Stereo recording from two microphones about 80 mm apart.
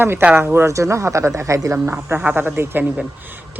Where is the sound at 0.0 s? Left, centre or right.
Right.